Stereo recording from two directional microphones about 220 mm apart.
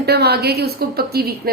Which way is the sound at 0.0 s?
45° right (ahead or behind).